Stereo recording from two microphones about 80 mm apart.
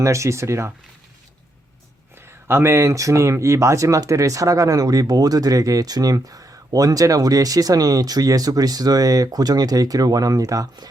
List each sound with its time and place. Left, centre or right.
0.0 s speech: right
2.1 s speech: right